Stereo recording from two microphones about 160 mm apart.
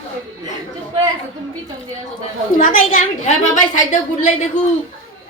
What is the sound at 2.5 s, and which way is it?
A woman's voice, 55° left (ahead or behind).